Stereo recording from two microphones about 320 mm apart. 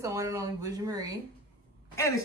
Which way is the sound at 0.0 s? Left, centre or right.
Centre.